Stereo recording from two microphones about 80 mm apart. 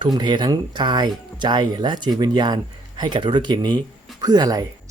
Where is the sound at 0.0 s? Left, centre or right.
Right.